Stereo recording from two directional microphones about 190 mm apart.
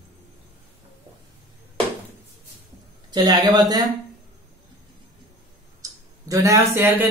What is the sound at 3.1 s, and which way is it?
Speech, 20° right (ahead or behind).